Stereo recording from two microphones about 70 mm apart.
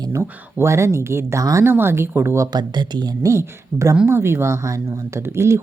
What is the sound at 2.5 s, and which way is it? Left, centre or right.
Speech, right.